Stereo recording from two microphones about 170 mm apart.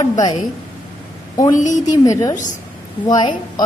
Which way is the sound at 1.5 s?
45° left (ahead or behind).